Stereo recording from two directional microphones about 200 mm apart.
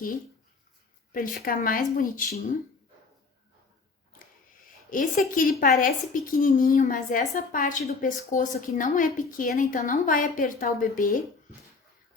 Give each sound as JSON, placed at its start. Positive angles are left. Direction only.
{"t": 1.1, "sound": "a woman's voice", "side_deg": 45}
{"t": 4.9, "sound": "a woman's voice", "side_deg": 40}